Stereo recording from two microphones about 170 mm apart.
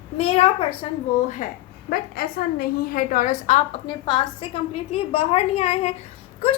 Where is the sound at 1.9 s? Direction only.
60° left (ahead or behind); by 3.8 s 45° left (ahead or behind).